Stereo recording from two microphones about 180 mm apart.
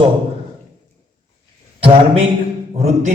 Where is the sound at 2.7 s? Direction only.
40° right (ahead or behind).